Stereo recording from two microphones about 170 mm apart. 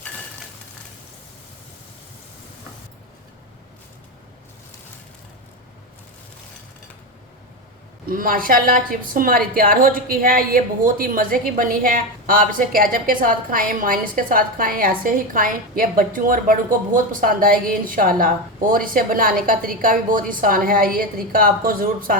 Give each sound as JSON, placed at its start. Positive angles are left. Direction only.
{"t": 8.0, "sound": "a woman's voice", "side_deg": -55}